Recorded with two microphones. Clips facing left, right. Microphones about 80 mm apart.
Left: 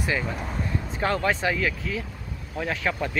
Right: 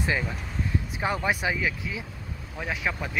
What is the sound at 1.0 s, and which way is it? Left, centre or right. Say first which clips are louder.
Speech: left 3 dB; centre.